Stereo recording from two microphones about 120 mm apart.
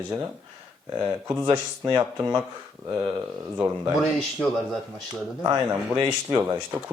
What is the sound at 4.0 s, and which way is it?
Speech, 5° left (ahead or behind).